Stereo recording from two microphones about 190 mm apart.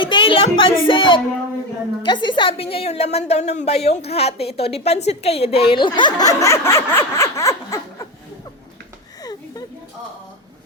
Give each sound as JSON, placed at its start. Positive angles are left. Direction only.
{"t": 0.0, "sound": "music", "side_deg": 25}
{"t": 2.0, "sound": "a woman's voice", "side_deg": 25}